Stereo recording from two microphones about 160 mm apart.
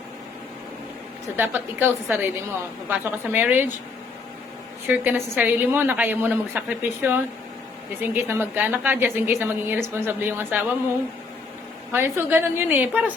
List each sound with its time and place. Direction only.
1.4 s a woman's voice: 15° right (ahead or behind)
4.9 s a woman's voice: 10° right (ahead or behind)
11.9 s a woman's voice: 15° right (ahead or behind)